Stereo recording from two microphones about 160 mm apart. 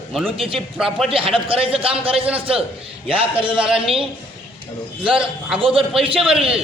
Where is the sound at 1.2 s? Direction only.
35° right (ahead or behind).